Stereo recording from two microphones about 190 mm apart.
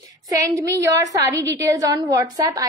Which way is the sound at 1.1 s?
15° right (ahead or behind).